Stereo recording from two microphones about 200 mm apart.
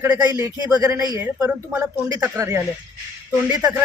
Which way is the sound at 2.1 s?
15° right (ahead or behind).